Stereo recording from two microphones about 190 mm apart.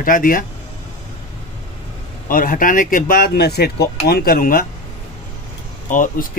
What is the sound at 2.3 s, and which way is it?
Speech, 45° left (ahead or behind).